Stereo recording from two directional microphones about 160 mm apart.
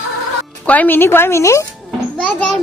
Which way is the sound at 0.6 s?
10° left (ahead or behind).